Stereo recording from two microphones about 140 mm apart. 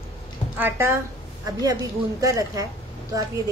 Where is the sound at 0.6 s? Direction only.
15° right (ahead or behind).